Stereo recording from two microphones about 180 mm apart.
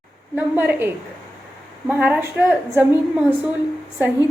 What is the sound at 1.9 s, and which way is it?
A woman's voice, 10° right (ahead or behind).